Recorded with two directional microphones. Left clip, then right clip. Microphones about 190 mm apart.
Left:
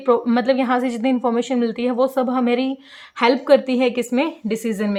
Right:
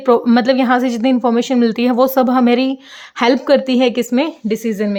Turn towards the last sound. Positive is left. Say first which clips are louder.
# right 4 dB
turn(degrees=-20)  # may be behind; listen again after turning